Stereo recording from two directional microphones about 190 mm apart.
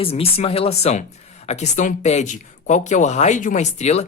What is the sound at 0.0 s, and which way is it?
Speech, 30° left (ahead or behind).